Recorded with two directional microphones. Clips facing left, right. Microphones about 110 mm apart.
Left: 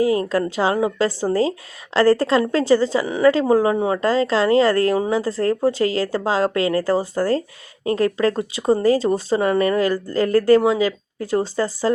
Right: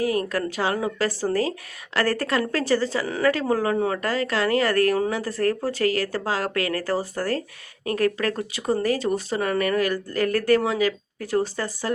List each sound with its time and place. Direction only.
0.0 s a woman's voice: 25° left (ahead or behind)